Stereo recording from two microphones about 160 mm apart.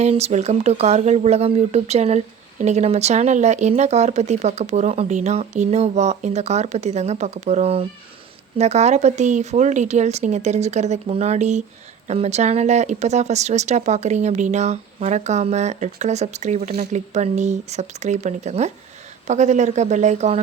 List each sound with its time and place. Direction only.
0.0 s speech: 40° right (ahead or behind)